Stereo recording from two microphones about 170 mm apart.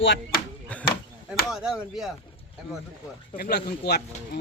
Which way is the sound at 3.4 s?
70° left (ahead or behind).